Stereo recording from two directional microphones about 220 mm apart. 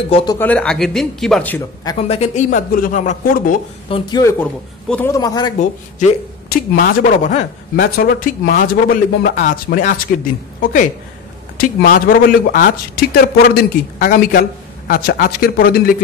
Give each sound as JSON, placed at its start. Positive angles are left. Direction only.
{"t": 0.4, "sound": "speech", "side_deg": 5}
{"t": 2.0, "sound": "speech", "side_deg": 30}
{"t": 3.9, "sound": "a man's voice", "side_deg": 20}
{"t": 6.5, "sound": "speech", "side_deg": 40}